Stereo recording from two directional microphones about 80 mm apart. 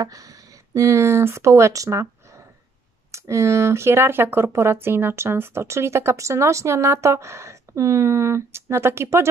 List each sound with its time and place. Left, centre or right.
0.0 s speech: right
0.7 s speech: right
3.1 s speech: right